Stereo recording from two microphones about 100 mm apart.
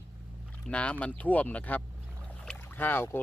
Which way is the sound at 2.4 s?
15° left (ahead or behind).